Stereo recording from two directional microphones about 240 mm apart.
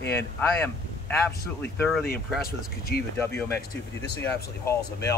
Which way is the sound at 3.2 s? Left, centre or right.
Centre.